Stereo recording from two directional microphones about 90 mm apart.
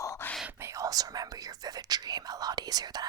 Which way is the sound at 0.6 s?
35° right (ahead or behind).